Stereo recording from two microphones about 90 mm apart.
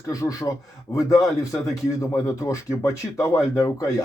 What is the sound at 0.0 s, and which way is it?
Speech, 40° left (ahead or behind).